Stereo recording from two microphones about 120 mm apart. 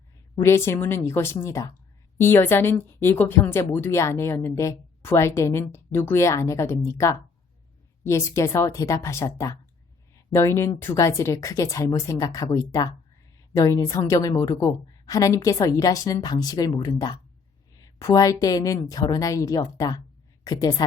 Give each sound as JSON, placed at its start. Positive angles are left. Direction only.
{"t": 0.3, "sound": "a woman's voice", "side_deg": 25}